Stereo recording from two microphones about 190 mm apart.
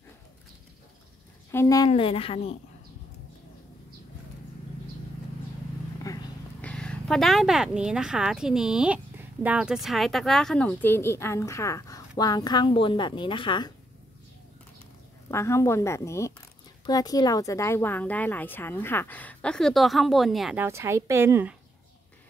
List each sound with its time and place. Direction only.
1.5 s speech: 15° left (ahead or behind)
1.9 s speech: 30° left (ahead or behind)
6.1 s a sound: 15° left (ahead or behind)
6.6 s speech: 5° left (ahead or behind); by 13.7 s 25° left (ahead or behind)
15.3 s speech: 15° left (ahead or behind); by 20.6 s centre (ahead or behind)
20.6 s a woman's voice: 15° right (ahead or behind)